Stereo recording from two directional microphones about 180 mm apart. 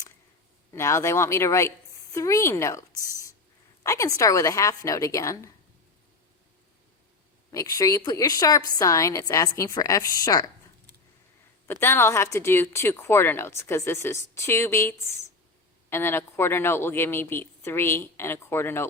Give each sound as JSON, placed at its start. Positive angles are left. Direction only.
{"t": 0.7, "sound": "speech", "side_deg": 15}
{"t": 2.9, "sound": "speech", "side_deg": -15}
{"t": 3.8, "sound": "speech", "side_deg": 15}
{"t": 7.5, "sound": "a woman's voice", "side_deg": 20}
{"t": 11.7, "sound": "speech", "side_deg": 15}